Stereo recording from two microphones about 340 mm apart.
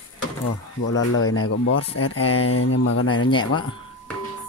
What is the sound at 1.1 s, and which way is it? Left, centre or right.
Speech, left.